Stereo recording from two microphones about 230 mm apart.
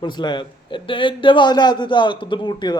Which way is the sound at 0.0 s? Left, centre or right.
Centre.